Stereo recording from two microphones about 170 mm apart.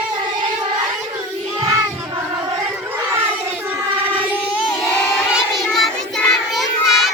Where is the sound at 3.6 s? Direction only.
10° right (ahead or behind).